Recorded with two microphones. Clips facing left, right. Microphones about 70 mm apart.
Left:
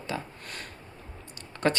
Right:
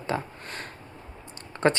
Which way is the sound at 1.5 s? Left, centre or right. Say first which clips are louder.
Right 4 dB; right.